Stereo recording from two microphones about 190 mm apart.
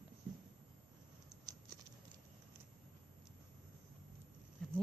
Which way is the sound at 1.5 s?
20° right (ahead or behind).